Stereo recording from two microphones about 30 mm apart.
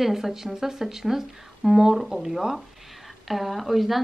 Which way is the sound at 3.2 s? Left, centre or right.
Centre.